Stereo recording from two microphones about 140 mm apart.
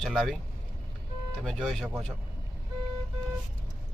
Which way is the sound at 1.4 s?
Centre (ahead or behind).